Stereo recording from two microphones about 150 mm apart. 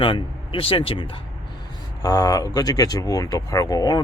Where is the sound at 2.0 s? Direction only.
25° left (ahead or behind).